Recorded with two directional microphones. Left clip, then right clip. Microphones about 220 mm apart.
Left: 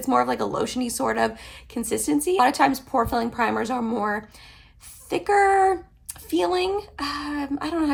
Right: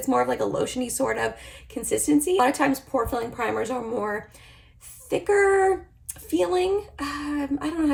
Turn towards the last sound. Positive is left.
turn(degrees=10)  # may be behind; listen again after turning